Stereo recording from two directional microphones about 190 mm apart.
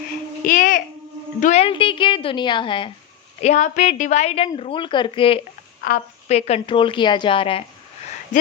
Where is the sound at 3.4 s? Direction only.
40° left (ahead or behind).